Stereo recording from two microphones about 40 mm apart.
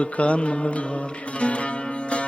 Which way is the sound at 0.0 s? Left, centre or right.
Left.